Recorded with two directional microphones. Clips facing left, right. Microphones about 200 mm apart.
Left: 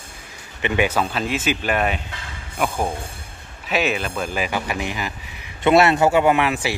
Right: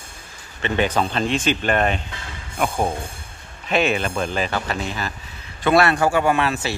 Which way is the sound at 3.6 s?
5° left (ahead or behind).